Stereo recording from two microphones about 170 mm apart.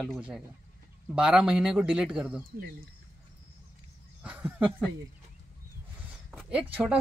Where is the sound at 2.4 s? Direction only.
60° right (ahead or behind).